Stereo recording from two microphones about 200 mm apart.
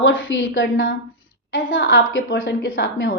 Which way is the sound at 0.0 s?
75° left (ahead or behind).